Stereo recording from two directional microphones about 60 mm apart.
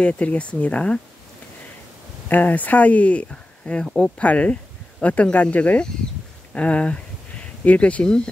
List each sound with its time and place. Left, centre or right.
0.0 s speech: left
2.2 s speech: left